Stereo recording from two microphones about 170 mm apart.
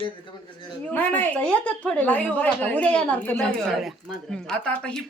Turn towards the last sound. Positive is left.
turn(degrees=5)  # may be behind; listen again after turning